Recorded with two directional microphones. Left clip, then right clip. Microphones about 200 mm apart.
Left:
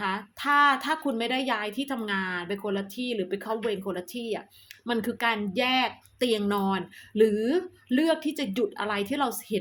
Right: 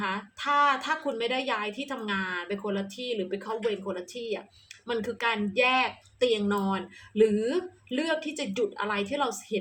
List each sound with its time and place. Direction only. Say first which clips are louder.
0.0 s speech: left 2 dB; 40° left (ahead or behind)